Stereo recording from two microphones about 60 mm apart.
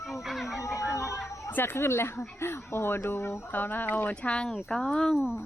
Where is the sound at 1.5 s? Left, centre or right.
Left.